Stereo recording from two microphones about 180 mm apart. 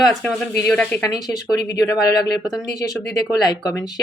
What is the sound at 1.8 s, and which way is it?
Speech, 20° left (ahead or behind).